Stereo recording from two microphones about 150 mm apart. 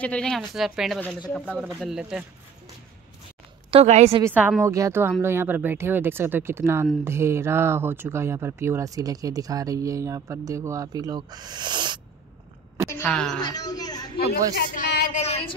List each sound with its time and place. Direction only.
0.0 s speech: 5° left (ahead or behind)
3.7 s a woman's voice: 45° right (ahead or behind)
4.2 s speech: 10° right (ahead or behind); by 12.0 s 30° right (ahead or behind)
13.0 s speech: 5° left (ahead or behind)
13.4 s a man's voice: 25° left (ahead or behind)
14.5 s speech: 90° left
15.1 s a sound: 45° left (ahead or behind)